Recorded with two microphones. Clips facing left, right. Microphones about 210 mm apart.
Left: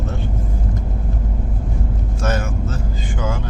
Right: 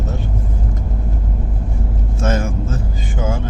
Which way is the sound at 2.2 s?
25° right (ahead or behind).